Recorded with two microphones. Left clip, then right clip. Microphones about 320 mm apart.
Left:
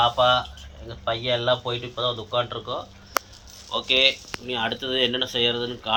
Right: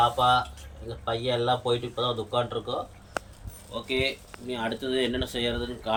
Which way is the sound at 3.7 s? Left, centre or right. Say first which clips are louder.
Left 9 dB; centre.